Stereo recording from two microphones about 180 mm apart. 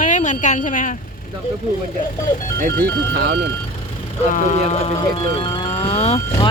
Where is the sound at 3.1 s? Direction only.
60° right (ahead or behind).